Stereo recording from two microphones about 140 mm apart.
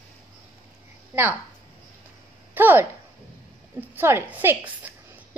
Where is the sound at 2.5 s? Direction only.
15° right (ahead or behind).